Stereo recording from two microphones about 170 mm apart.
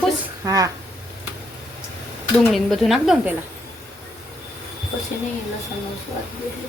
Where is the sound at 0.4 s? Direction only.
20° right (ahead or behind).